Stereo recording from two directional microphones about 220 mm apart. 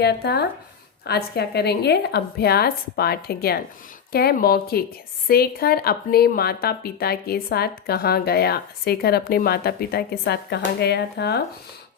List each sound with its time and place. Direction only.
0.0 s a woman's voice: 50° left (ahead or behind)